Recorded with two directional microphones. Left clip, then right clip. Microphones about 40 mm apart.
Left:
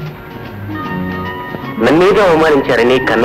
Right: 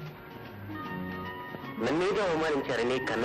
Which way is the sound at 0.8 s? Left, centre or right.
Left.